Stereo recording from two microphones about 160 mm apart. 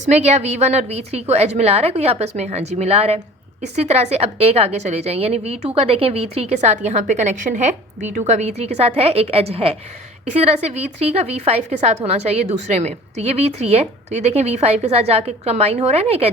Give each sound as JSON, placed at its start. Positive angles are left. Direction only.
{"t": 0.0, "sound": "a woman's voice", "side_deg": -45}